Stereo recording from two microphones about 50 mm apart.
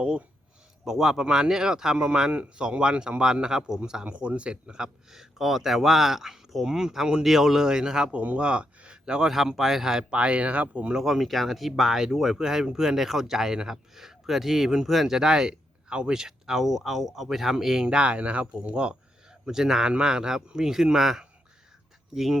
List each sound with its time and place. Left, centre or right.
0.9 s speech: centre
4.0 s speech: right
8.2 s speech: right
9.3 s speech: centre
10.1 s speech: right
10.9 s speech: centre
17.8 s speech: right; by 22.4 s centre